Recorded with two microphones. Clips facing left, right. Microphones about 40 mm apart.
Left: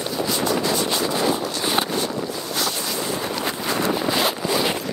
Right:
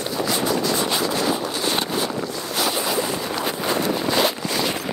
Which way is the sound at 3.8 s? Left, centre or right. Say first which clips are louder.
Even; centre.